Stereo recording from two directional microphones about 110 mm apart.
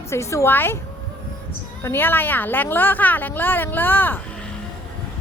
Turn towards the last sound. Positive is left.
turn(degrees=15)  # may be behind; listen again after turning